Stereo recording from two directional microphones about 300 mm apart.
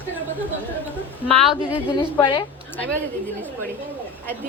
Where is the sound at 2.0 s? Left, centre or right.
Centre.